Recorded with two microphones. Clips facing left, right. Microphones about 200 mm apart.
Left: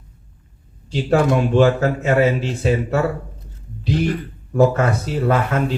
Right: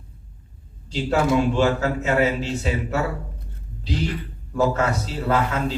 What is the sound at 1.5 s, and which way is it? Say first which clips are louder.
Speech: left 5 dB; 55° left (ahead or behind).